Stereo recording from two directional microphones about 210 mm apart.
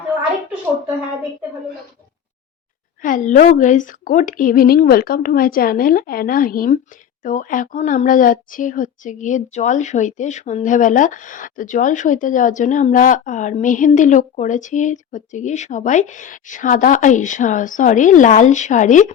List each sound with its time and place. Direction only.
3.0 s a woman's voice: 40° left (ahead or behind)